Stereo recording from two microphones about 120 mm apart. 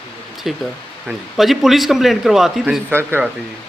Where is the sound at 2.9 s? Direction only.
20° right (ahead or behind).